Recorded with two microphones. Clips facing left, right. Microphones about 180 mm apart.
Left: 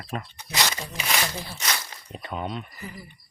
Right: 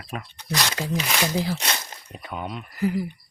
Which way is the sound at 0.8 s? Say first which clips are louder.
Right 4 dB; 90° right.